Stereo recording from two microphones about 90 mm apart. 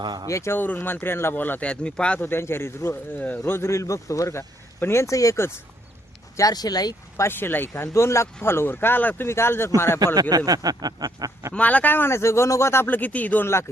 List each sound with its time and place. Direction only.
0.0 s speech: 55° right (ahead or behind)
0.3 s speech: 30° left (ahead or behind)
6.3 s speech: 45° left (ahead or behind)
7.2 s speech: 25° left (ahead or behind)
10.2 s speech: 45° right (ahead or behind)
11.5 s speech: 15° left (ahead or behind)